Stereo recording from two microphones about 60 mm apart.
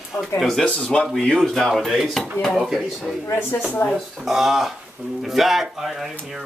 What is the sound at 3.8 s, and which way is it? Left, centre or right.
Speech, left.